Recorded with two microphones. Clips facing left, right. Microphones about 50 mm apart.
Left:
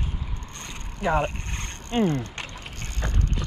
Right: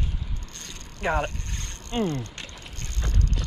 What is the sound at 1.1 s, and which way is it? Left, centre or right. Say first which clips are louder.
Vehicle: left 3 dB; left.